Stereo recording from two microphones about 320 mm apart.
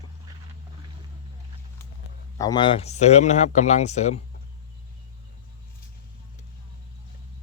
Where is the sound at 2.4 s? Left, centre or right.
Centre.